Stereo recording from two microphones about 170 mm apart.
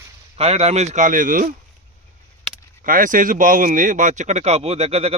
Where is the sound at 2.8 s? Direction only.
55° right (ahead or behind); by 5.2 s 35° right (ahead or behind).